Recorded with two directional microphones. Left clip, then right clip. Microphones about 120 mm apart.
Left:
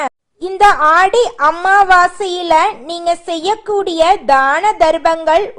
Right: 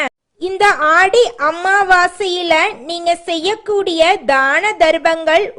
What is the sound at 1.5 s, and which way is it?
Child singing, 10° right (ahead or behind).